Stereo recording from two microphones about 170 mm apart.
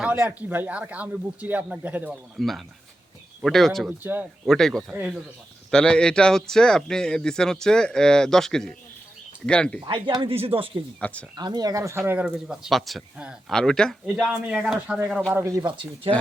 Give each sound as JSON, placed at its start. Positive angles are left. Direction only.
{"t": 0.0, "sound": "speech", "side_deg": -10}
{"t": 2.4, "sound": "speech", "side_deg": 0}
{"t": 4.0, "sound": "speech", "side_deg": -10}
{"t": 4.4, "sound": "speech", "side_deg": 0}
{"t": 9.8, "sound": "speech", "side_deg": -25}
{"t": 11.0, "sound": "speech", "side_deg": 10}
{"t": 11.3, "sound": "speech", "side_deg": -25}
{"t": 15.3, "sound": "speech", "side_deg": -15}